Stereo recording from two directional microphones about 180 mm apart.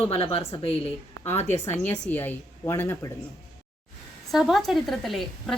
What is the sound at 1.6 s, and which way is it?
A woman's voice, 15° left (ahead or behind).